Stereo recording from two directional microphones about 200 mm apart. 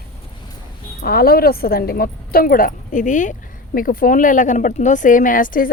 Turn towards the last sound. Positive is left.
turn(degrees=45)  # may be behind; listen again after turning